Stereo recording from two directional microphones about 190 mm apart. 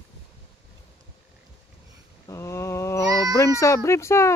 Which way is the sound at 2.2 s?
15° left (ahead or behind).